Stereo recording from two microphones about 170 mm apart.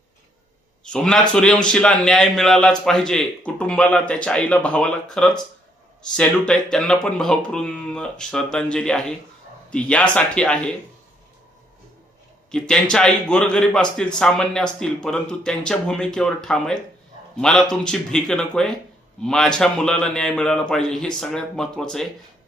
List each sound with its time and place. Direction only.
0.9 s a man's voice: 5° left (ahead or behind)
12.5 s a man's voice: 5° left (ahead or behind)